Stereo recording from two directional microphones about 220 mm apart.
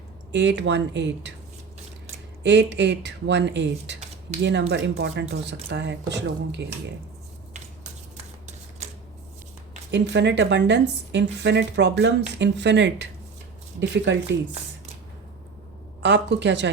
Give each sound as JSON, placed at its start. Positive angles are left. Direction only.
{"t": 0.3, "sound": "speech", "side_deg": -50}
{"t": 2.4, "sound": "speech", "side_deg": -50}
{"t": 8.1, "sound": "a sound", "side_deg": -30}
{"t": 9.9, "sound": "speech", "side_deg": -50}
{"t": 16.0, "sound": "speech", "side_deg": -50}